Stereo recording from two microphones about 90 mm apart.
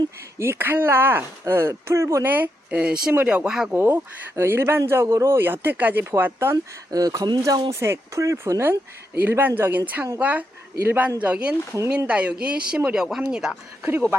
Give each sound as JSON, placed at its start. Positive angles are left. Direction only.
{"t": 0.3, "sound": "speech", "side_deg": -25}
{"t": 3.8, "sound": "speech", "side_deg": -25}
{"t": 6.9, "sound": "speech", "side_deg": -45}
{"t": 7.7, "sound": "speech", "side_deg": -30}